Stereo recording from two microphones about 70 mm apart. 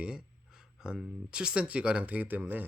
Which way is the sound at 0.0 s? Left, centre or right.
Centre.